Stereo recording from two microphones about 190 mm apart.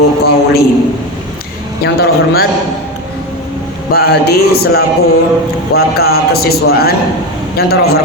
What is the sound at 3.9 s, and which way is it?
A man's voice, 55° left (ahead or behind).